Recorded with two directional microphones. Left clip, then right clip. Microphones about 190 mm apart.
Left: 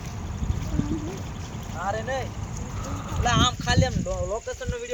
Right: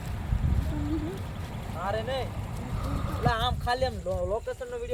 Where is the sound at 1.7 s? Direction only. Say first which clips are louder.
Left 2 dB; 35° right (ahead or behind).